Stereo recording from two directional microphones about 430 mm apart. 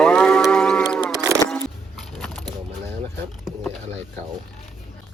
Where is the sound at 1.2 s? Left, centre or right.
Centre.